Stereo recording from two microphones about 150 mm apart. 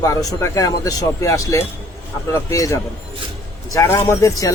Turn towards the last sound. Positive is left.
turn(degrees=20)  # may be behind; listen again after turning